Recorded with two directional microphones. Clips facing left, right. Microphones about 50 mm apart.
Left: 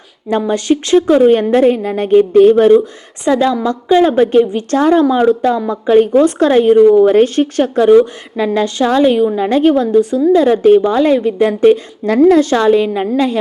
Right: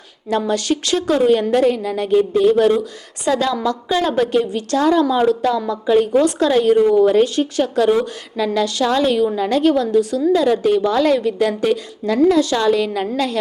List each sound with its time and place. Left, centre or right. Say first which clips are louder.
0.3 s a woman's voice: left 5 dB; left
8.4 s a woman's voice: left 4 dB; left